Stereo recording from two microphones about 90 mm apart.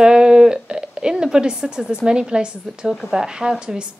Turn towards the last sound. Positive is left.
turn(degrees=-10)  # may be behind; listen again after turning